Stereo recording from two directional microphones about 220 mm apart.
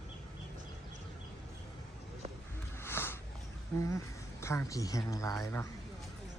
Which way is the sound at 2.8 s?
10° left (ahead or behind).